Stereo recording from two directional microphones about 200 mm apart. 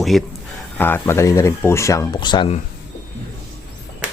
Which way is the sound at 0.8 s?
10° left (ahead or behind).